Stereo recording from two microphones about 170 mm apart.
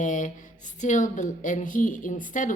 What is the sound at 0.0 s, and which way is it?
A woman's voice, 50° left (ahead or behind).